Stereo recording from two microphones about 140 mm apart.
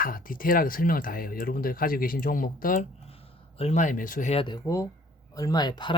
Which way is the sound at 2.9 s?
45° left (ahead or behind).